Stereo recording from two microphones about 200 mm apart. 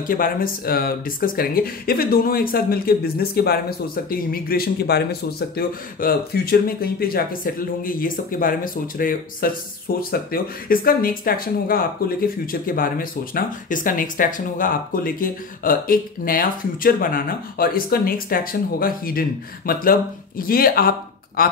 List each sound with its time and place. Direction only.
0.0 s speech: 45° left (ahead or behind)